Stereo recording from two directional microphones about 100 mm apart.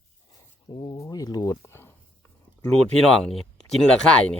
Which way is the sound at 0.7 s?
40° left (ahead or behind).